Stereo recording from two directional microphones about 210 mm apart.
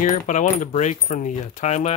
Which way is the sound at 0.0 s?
35° left (ahead or behind).